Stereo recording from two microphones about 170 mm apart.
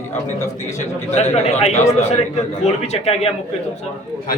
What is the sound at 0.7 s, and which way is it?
Speech, 40° left (ahead or behind).